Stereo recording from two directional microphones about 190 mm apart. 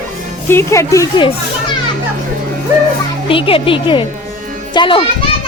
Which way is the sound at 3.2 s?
30° left (ahead or behind).